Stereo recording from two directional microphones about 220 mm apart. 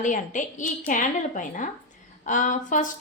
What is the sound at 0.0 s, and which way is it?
A woman's voice, 35° left (ahead or behind).